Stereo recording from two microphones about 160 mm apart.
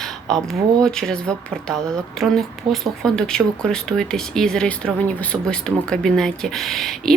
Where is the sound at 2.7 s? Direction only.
30° right (ahead or behind).